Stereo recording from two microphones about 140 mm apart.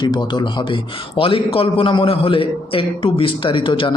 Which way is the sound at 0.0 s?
35° left (ahead or behind).